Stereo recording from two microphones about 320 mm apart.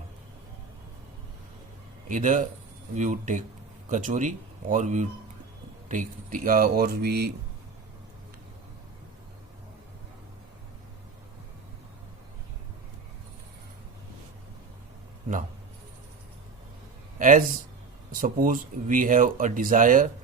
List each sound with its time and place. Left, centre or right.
2.0 s speech: right
17.2 s a man's voice: right